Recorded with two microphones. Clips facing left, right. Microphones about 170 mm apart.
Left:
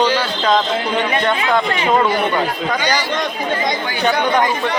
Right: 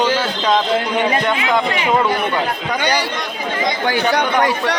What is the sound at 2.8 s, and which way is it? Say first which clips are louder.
Speech: right 3 dB; 60° right (ahead or behind).